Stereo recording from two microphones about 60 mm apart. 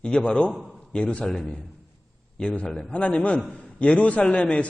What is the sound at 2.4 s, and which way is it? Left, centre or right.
A man's voice, centre.